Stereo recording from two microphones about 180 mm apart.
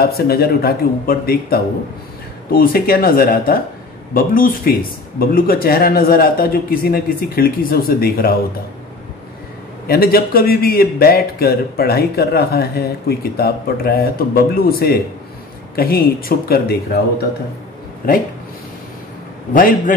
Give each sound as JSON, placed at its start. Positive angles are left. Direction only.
{"t": 0.0, "sound": "a man's voice", "side_deg": 60}
{"t": 9.8, "sound": "a man's voice", "side_deg": 60}
{"t": 19.5, "sound": "speech", "side_deg": 50}